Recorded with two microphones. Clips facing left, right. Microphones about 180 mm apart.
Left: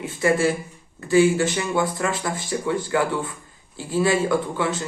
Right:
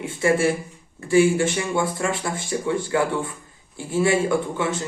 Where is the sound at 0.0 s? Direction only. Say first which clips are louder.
Even; 25° right (ahead or behind).